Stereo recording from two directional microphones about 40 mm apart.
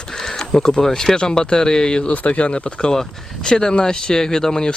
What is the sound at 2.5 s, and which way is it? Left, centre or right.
Speech, left.